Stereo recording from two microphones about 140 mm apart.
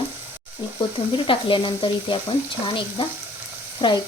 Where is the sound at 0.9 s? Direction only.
40° left (ahead or behind).